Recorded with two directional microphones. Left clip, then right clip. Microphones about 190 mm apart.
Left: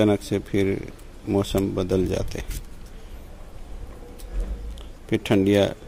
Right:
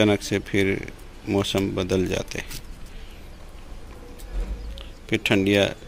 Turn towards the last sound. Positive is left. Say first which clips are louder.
# even
turn(degrees=20)  # may be behind; listen again after turning